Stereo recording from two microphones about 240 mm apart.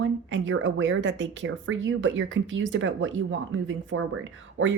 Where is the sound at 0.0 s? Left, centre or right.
Right.